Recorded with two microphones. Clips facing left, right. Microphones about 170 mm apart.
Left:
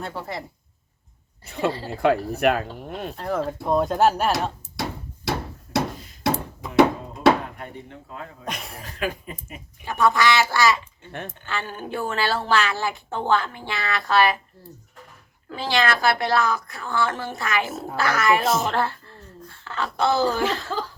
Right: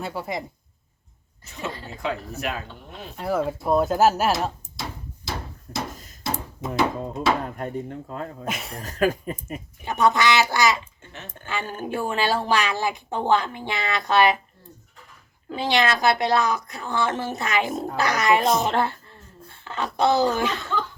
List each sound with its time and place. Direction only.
0.0 s a woman's voice: 10° right (ahead or behind)
1.5 s speech: 60° left (ahead or behind)
3.2 s speech: 5° right (ahead or behind)
5.9 s a sound: 45° right (ahead or behind)
6.7 s a sound: 65° left (ahead or behind)
7.4 s speech: 40° right (ahead or behind)
8.4 s speech: centre (ahead or behind)
8.8 s speech: 45° right (ahead or behind)
9.8 s a woman's voice: 20° right (ahead or behind)
11.9 s a woman's voice: 15° right (ahead or behind)
15.4 s a woman's voice: 20° right (ahead or behind)
18.4 s speech: centre (ahead or behind)
18.7 s a woman's voice: 20° right (ahead or behind)
20.7 s chuckle: 35° left (ahead or behind)